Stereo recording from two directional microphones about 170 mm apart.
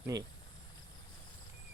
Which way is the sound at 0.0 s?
20° right (ahead or behind).